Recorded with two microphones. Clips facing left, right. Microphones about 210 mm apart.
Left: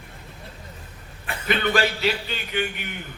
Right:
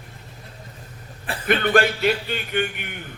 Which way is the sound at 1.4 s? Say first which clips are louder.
Right 4 dB; 55° right (ahead or behind).